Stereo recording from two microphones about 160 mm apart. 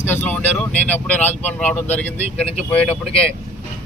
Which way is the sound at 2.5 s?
40° left (ahead or behind).